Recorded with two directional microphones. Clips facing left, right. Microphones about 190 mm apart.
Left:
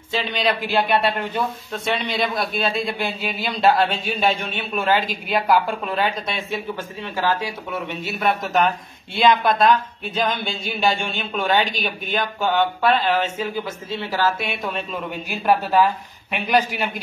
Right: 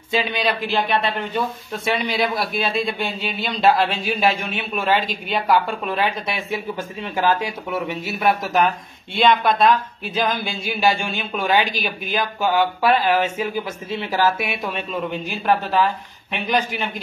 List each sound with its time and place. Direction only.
0.1 s speech: 10° right (ahead or behind); by 1.4 s 5° left (ahead or behind)
2.0 s speech: 10° right (ahead or behind)
6.5 s speech: 20° right (ahead or behind)
8.2 s speech: centre (ahead or behind)
14.6 s speech: centre (ahead or behind)
15.3 s speech: 10° left (ahead or behind)